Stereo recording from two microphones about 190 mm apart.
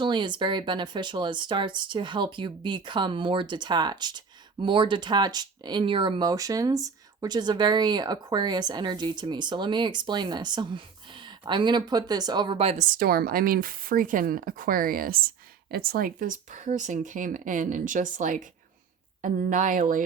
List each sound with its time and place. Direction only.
0.0 s speech: 25° right (ahead or behind)
12.9 s speech: 50° right (ahead or behind)